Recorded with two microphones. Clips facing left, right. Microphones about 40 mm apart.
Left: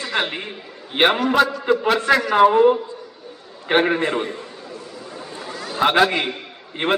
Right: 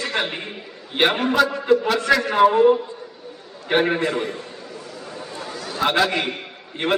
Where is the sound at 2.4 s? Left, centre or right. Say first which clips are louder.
Left 1 dB; centre.